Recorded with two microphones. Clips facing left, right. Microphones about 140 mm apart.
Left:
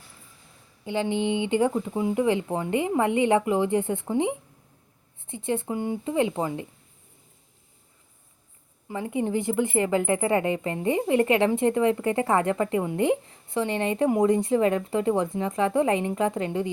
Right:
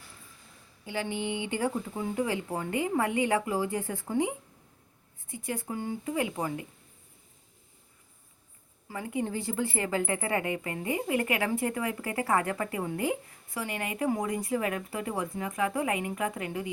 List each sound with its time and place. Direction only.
0.9 s a woman's voice: 20° left (ahead or behind)
8.9 s a woman's voice: 20° left (ahead or behind)